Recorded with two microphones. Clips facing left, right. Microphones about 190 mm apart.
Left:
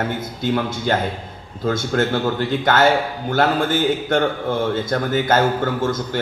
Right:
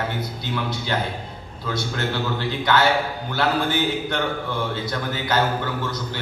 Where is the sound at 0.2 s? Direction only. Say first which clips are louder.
Left 6 dB; 50° left (ahead or behind).